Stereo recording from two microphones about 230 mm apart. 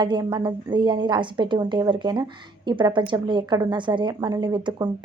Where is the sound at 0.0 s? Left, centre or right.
Centre.